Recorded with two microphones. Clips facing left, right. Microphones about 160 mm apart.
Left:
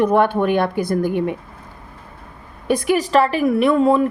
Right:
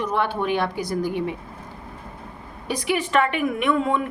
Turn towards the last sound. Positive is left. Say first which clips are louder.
# left 7 dB
turn(degrees=35)  # may be behind; listen again after turning